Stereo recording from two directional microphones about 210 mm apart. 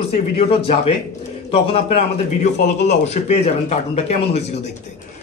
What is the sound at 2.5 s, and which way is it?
Speech, 50° left (ahead or behind).